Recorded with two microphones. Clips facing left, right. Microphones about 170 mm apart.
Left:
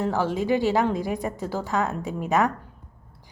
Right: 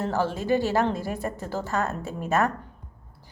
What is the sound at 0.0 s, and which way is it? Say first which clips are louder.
A woman's voice: left 2 dB; 15° left (ahead or behind).